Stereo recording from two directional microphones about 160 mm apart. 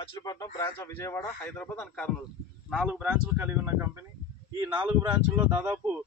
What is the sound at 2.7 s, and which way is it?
Speech, 5° right (ahead or behind).